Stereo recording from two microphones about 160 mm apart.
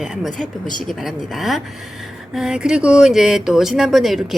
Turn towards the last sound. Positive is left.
turn(degrees=0)  # may be behind; listen again after turning